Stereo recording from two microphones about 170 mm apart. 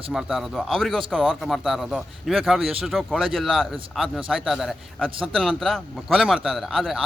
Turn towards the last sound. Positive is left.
turn(degrees=-5)  # may be behind; listen again after turning